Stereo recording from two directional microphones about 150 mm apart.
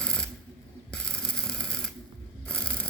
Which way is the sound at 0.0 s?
5° left (ahead or behind).